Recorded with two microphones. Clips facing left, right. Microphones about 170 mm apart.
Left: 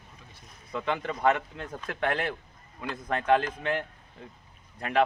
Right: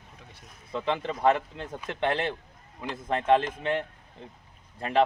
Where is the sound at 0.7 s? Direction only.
30° right (ahead or behind).